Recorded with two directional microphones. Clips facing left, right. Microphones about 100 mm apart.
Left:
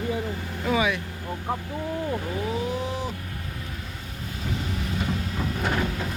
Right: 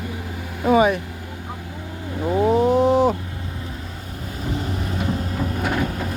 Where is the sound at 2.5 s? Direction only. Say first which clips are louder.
Right 15 dB; 55° right (ahead or behind); by 3.1 s 70° right (ahead or behind).